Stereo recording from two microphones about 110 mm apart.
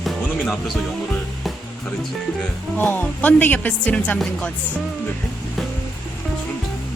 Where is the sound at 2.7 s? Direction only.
15° left (ahead or behind).